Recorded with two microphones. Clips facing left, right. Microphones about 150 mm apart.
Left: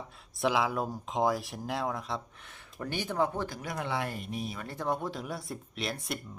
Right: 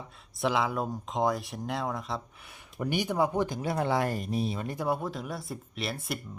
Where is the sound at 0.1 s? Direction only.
Centre (ahead or behind).